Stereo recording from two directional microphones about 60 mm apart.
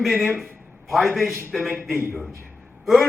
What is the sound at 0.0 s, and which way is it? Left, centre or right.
A man's voice, centre.